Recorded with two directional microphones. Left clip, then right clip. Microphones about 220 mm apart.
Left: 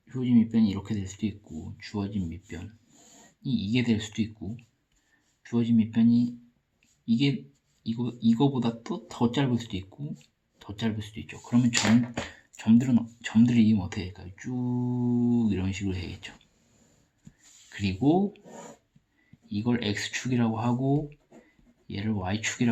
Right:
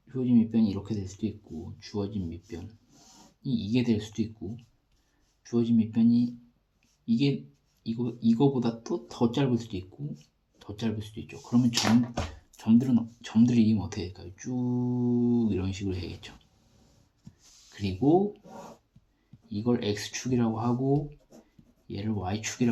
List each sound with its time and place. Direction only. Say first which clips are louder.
0.1 s speech: left 1 dB; 30° left (ahead or behind)
5.4 s speech: even; 30° left (ahead or behind)
14.8 s mantra: right 1 dB; 10° left (ahead or behind)
15.0 s speech: left 1 dB; 30° left (ahead or behind)
17.7 s speech: right 1 dB; 35° left (ahead or behind)
19.5 s speech: right 1 dB; 35° left (ahead or behind)
21.8 s speech: left 1 dB; 35° left (ahead or behind)